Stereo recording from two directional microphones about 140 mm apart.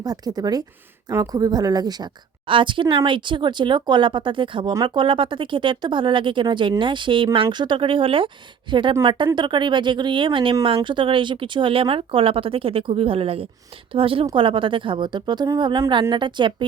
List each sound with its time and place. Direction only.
0.0 s speech: 30° right (ahead or behind)